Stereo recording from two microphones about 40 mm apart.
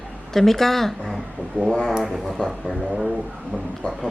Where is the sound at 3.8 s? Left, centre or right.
Left.